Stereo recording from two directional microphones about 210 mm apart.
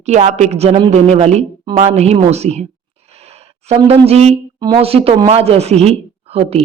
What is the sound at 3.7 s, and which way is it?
A woman's voice, 30° right (ahead or behind).